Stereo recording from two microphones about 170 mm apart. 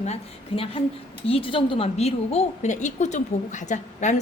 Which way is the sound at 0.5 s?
30° left (ahead or behind).